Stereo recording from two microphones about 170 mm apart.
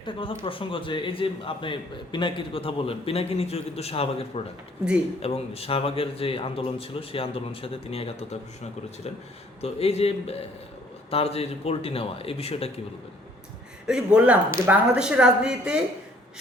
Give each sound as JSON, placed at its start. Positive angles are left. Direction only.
{"t": 0.0, "sound": "a man's voice", "side_deg": 30}
{"t": 9.6, "sound": "a man's voice", "side_deg": 35}
{"t": 13.8, "sound": "speech", "side_deg": -5}